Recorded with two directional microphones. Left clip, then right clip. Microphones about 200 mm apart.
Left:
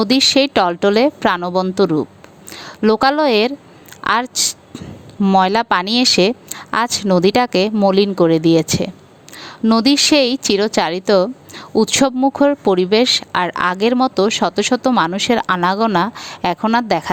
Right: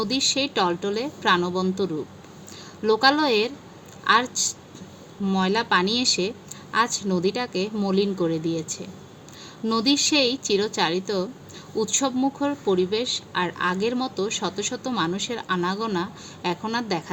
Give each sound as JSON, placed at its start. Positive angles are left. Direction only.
{"t": 0.0, "sound": "a woman's voice", "side_deg": 50}